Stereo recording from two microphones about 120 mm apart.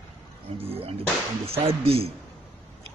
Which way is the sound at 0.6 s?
55° right (ahead or behind).